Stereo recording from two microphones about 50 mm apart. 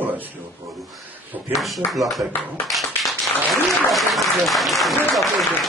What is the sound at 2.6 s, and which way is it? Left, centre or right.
Clapping, centre.